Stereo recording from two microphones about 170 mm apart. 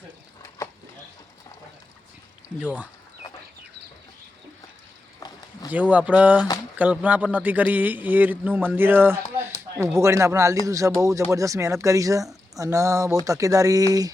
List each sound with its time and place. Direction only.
2.6 s a man's voice: 5° right (ahead or behind)
5.2 s a sound: 20° left (ahead or behind)
5.7 s a man's voice: 10° right (ahead or behind)